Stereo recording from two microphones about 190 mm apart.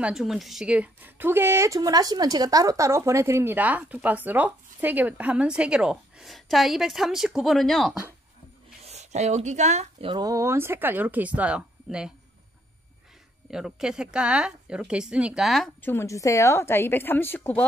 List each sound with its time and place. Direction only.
0.0 s a woman's voice: centre (ahead or behind)
8.8 s speech: 35° right (ahead or behind)
9.9 s a woman's voice: 25° right (ahead or behind); by 12.1 s 5° right (ahead or behind)
13.5 s a woman's voice: 5° right (ahead or behind)
15.8 s a woman's voice: 10° left (ahead or behind)